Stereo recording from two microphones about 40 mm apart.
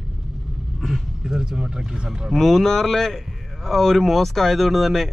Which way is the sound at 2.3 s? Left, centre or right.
Centre.